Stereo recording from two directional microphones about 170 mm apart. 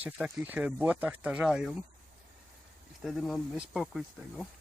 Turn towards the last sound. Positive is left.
turn(degrees=0)  # may be behind; listen again after turning